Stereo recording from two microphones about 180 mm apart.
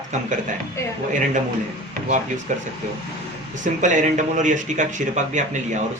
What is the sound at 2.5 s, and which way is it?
Speech, 40° right (ahead or behind).